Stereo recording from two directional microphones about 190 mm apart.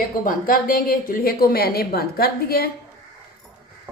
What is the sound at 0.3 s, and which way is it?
Speech, 50° left (ahead or behind).